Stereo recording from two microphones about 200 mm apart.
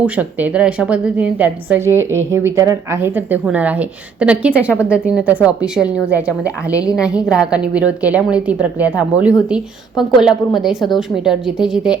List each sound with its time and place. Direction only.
0.0 s a woman's voice: 10° right (ahead or behind)
6.7 s a woman's voice: 15° left (ahead or behind)
7.0 s a woman's voice: 5° right (ahead or behind)